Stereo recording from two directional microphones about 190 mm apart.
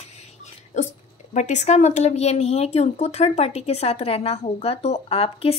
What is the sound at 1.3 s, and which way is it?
A woman's voice, 40° left (ahead or behind).